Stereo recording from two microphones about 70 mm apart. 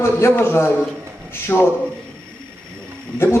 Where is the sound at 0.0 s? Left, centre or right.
Left.